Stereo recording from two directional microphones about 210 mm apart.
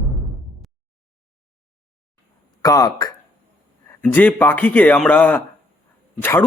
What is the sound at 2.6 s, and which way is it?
A man's voice, 15° left (ahead or behind).